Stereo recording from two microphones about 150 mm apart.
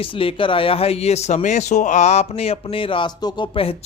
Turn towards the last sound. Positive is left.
turn(degrees=35)  # may be behind; listen again after turning